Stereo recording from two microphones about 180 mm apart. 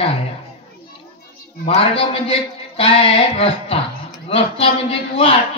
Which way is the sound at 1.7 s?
35° left (ahead or behind).